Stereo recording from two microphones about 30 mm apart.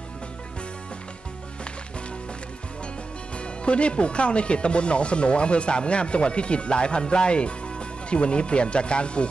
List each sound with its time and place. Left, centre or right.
3.3 s speech: left